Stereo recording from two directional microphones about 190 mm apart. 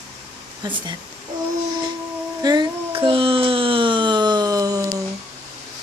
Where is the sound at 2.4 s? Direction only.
20° right (ahead or behind).